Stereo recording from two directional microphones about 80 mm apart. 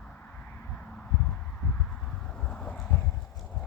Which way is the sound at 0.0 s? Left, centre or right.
Centre.